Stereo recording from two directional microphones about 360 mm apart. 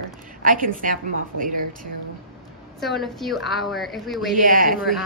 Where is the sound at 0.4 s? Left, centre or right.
Right.